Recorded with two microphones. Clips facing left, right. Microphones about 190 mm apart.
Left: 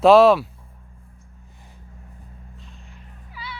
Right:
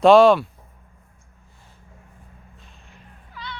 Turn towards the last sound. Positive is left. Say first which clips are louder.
# even
turn(degrees=5)  # may be behind; listen again after turning